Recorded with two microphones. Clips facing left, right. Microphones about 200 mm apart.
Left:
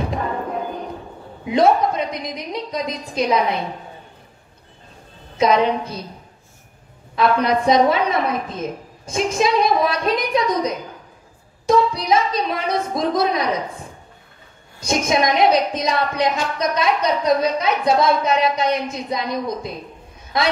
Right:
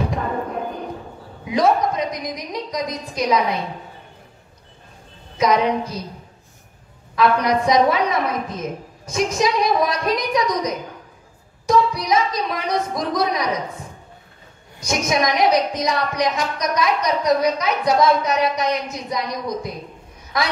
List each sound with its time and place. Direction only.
1.5 s a woman's voice: 25° left (ahead or behind)
5.4 s a woman's voice: 25° left (ahead or behind)
7.2 s a woman's voice: 25° left (ahead or behind)
14.8 s a woman's voice: 25° left (ahead or behind)